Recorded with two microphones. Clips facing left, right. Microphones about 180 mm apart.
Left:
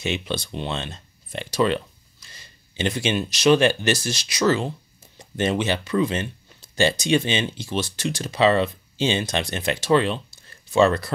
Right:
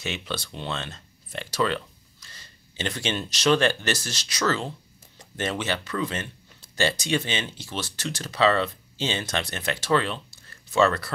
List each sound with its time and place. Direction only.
0.0 s speech: 15° left (ahead or behind)